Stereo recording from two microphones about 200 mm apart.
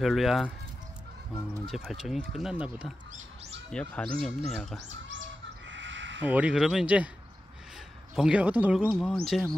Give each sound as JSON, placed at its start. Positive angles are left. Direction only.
{"t": 0.0, "sound": "speech", "side_deg": 0}
{"t": 1.7, "sound": "speech", "side_deg": 0}
{"t": 5.7, "sound": "crow", "side_deg": -65}
{"t": 6.2, "sound": "speech", "side_deg": -5}
{"t": 8.2, "sound": "speech", "side_deg": -5}